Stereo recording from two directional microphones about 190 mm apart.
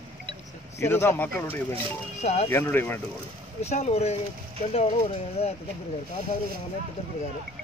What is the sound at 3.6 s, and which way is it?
Speech, 35° left (ahead or behind).